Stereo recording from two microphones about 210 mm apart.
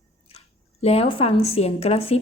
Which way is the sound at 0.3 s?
30° left (ahead or behind).